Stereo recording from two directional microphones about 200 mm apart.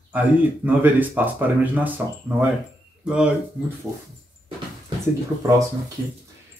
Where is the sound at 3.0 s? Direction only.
5° right (ahead or behind).